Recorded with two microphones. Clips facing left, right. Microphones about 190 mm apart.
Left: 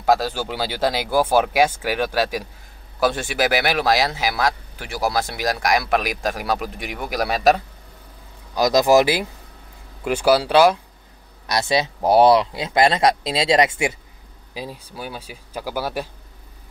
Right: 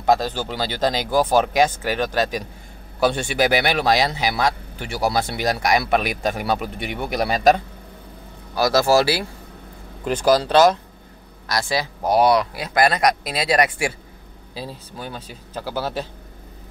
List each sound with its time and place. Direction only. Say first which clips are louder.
0.0 s speech: even; 5° left (ahead or behind)
8.5 s speech: left 2 dB; 15° left (ahead or behind)
11.4 s speech: left 3 dB; 20° left (ahead or behind)